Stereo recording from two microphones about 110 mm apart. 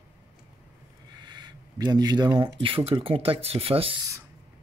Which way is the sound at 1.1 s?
40° right (ahead or behind).